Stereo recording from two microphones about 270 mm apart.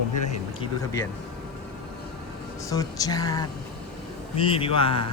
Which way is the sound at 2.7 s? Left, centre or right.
Centre.